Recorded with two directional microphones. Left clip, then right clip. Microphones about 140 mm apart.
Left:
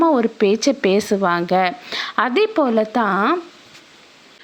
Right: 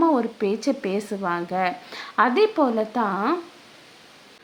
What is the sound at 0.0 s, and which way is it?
A woman's voice, 30° left (ahead or behind).